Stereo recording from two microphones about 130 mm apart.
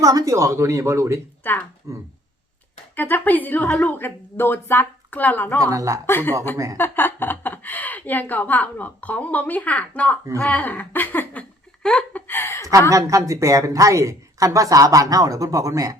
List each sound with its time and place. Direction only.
0.0 s a woman's voice: 25° right (ahead or behind)
1.5 s speech: 15° left (ahead or behind)
1.9 s a woman's voice: 25° right (ahead or behind)
2.9 s speech: 15° left (ahead or behind)
5.7 s a woman's voice: 25° right (ahead or behind)
6.1 s speech: 15° left (ahead or behind)
12.9 s a woman's voice: 25° right (ahead or behind)